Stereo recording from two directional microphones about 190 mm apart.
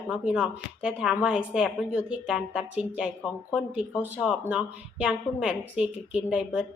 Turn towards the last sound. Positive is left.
turn(degrees=-5)  # may be behind; listen again after turning